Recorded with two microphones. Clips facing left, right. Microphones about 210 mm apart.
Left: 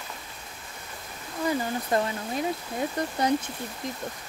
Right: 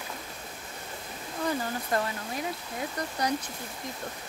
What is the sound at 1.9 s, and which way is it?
Speech, 20° left (ahead or behind).